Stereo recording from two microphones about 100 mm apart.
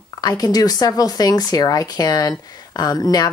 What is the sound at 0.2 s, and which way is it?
Speech, 40° left (ahead or behind).